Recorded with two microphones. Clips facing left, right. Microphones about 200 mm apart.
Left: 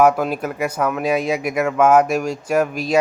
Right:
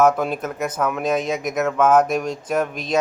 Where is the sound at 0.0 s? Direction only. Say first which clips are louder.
Left 2 dB; 10° left (ahead or behind).